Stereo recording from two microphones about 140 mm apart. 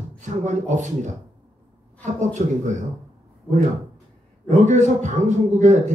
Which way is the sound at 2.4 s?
60° right (ahead or behind).